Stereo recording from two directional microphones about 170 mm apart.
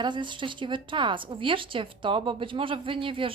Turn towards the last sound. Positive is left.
turn(degrees=-30)  # may be behind; listen again after turning